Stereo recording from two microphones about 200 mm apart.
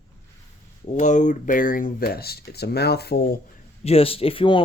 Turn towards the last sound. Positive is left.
turn(degrees=25)  # may be behind; listen again after turning